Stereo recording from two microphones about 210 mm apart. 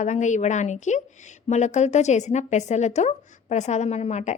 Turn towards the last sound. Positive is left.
turn(degrees=35)  # may be behind; listen again after turning